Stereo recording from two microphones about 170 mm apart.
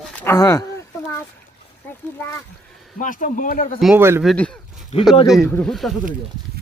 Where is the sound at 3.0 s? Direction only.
50° left (ahead or behind).